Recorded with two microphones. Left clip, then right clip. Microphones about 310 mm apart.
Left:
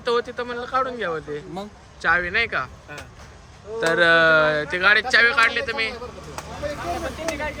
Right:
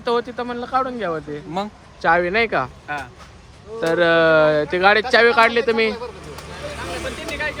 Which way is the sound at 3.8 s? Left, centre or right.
Centre.